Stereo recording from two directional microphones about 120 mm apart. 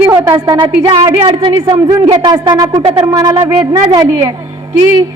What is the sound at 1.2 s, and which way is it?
Speech, 45° right (ahead or behind).